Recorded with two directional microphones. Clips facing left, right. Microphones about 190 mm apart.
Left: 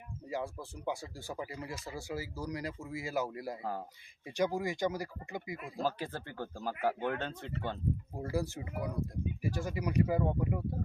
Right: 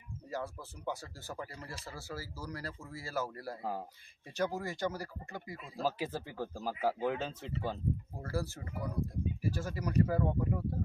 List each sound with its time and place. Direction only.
0.3 s speech: 15° left (ahead or behind)
3.6 s speech: 5° right (ahead or behind)
4.4 s speech: 15° left (ahead or behind)
5.8 s speech: 5° right (ahead or behind)
8.2 s speech: 15° left (ahead or behind)